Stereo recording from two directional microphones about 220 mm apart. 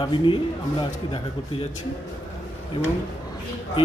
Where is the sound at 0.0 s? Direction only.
20° left (ahead or behind).